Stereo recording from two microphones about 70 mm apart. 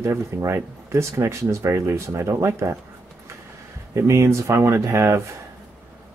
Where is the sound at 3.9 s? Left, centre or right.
Right.